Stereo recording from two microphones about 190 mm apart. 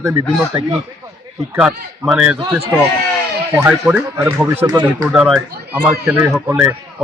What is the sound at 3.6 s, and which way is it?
A man's voice, 10° right (ahead or behind).